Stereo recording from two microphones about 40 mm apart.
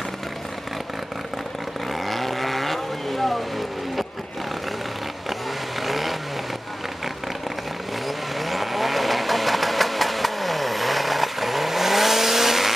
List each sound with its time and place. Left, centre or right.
1.9 s vehicle: centre
5.8 s vehicle: centre
8.4 s vehicle: centre